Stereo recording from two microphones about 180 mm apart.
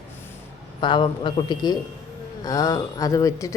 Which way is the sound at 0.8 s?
25° left (ahead or behind).